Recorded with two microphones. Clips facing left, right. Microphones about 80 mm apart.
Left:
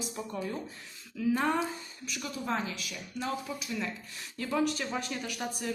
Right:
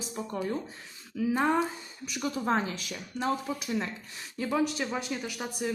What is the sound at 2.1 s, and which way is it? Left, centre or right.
Speech, right.